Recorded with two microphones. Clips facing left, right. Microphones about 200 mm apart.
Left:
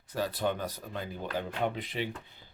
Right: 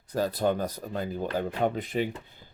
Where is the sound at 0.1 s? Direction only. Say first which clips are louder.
Right 5 dB; 40° right (ahead or behind).